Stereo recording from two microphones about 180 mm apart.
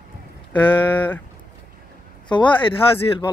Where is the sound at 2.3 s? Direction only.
25° left (ahead or behind).